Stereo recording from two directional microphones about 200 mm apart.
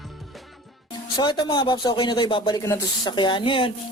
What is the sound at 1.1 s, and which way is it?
Speech, 20° left (ahead or behind).